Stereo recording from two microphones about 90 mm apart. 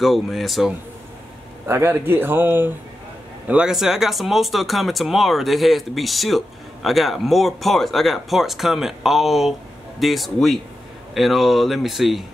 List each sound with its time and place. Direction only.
0.0 s speech: centre (ahead or behind)
1.7 s a man's voice: 25° right (ahead or behind)
3.4 s speech: 10° right (ahead or behind)